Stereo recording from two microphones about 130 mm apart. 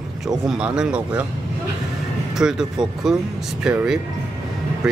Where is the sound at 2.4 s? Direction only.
5° right (ahead or behind).